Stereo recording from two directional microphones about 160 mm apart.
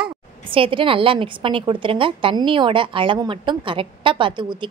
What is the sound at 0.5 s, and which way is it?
A woman's voice, 35° right (ahead or behind).